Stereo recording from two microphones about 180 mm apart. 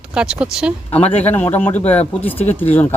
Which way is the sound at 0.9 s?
35° left (ahead or behind).